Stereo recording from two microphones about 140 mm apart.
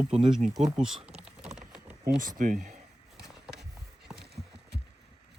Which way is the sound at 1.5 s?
5° right (ahead or behind).